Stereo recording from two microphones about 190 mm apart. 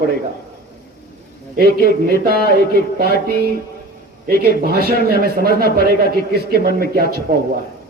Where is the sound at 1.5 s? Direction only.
50° right (ahead or behind).